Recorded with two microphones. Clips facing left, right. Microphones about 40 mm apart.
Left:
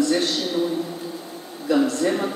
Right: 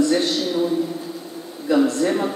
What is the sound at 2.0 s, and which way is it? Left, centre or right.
Speech, centre.